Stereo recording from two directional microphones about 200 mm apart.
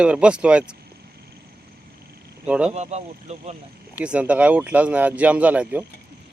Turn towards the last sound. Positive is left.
turn(degrees=-5)  # may be behind; listen again after turning